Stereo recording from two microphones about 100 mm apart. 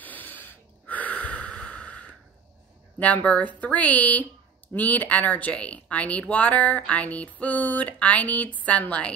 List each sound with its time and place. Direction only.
0.0 s snort: 20° left (ahead or behind)
3.0 s speech: 15° left (ahead or behind)